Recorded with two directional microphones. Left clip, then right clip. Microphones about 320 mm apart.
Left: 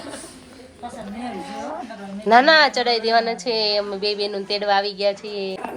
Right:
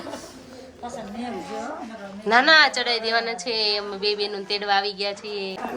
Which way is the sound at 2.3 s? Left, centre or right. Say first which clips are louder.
Left 2 dB; centre.